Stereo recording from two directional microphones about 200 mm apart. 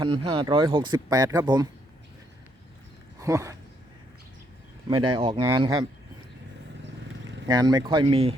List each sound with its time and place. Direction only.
0.0 s speech: 25° right (ahead or behind)
3.2 s speech: 15° right (ahead or behind)
4.9 s speech: 25° right (ahead or behind)
5.4 s speech: 15° right (ahead or behind)
7.4 s speech: 20° right (ahead or behind)